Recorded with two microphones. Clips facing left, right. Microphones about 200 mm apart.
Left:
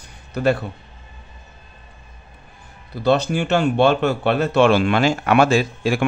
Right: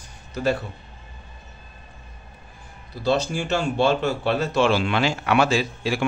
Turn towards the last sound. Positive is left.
turn(degrees=50)  # may be behind; listen again after turning